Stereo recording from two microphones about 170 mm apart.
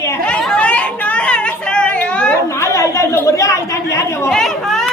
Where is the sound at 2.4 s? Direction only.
15° left (ahead or behind).